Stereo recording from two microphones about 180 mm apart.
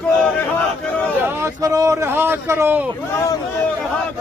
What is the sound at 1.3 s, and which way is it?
A man's voice, 15° right (ahead or behind).